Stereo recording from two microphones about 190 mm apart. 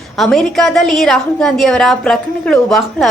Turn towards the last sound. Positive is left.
turn(degrees=0)  # may be behind; listen again after turning